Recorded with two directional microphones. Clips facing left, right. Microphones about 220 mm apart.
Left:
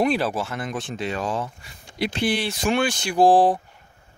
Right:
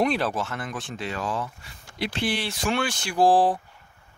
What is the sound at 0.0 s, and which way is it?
Speech, 5° left (ahead or behind).